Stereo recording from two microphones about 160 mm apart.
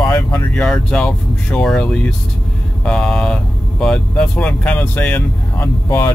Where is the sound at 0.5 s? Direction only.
5° left (ahead or behind).